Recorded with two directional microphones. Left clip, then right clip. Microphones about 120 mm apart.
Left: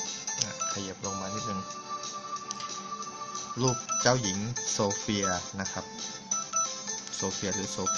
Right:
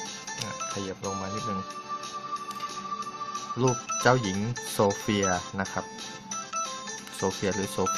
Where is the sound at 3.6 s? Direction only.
40° right (ahead or behind).